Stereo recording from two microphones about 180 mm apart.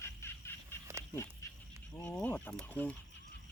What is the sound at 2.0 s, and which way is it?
Speech, 5° left (ahead or behind).